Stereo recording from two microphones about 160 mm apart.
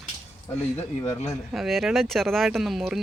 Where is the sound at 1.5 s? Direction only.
Centre (ahead or behind).